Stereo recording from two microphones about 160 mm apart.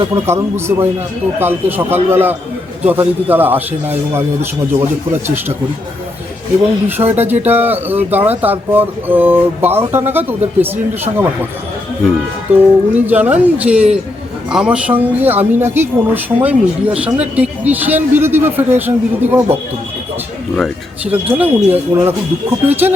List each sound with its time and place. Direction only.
0.3 s speech: 15° right (ahead or behind)
6.8 s speech: 15° right (ahead or behind)
12.5 s speech: 10° right (ahead or behind)
20.6 s speech: 10° right (ahead or behind)